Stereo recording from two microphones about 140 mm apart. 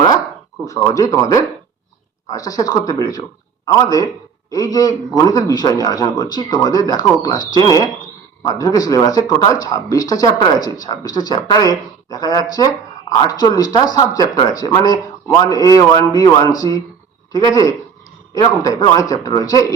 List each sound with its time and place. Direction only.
0.6 s speech: 25° left (ahead or behind)